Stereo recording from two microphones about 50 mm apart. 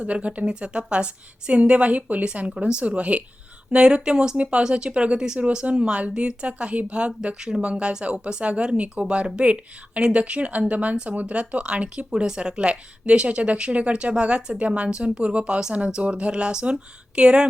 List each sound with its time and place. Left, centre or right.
0.0 s speech: right